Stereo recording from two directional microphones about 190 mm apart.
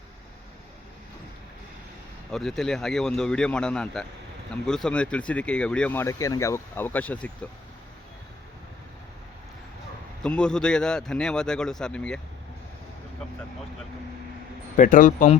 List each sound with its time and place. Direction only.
2.3 s a man's voice: centre (ahead or behind)
10.2 s a man's voice: 5° left (ahead or behind)
14.8 s speech: 45° left (ahead or behind)